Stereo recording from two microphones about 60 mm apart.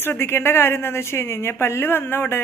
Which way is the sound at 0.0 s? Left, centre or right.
Left.